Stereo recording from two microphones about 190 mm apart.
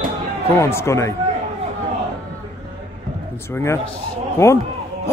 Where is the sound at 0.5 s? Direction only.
15° left (ahead or behind).